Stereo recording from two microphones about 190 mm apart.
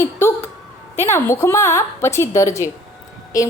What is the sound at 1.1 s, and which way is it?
A woman's voice, 15° left (ahead or behind).